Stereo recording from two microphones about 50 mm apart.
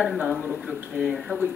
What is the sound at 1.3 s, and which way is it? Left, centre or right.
Speech, right.